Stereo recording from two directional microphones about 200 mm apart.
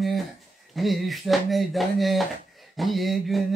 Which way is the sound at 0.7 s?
Centre (ahead or behind).